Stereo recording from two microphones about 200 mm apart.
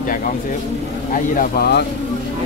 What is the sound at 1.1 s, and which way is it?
Speech, 45° left (ahead or behind).